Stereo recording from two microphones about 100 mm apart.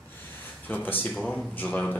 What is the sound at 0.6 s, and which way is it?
Speech, 20° left (ahead or behind).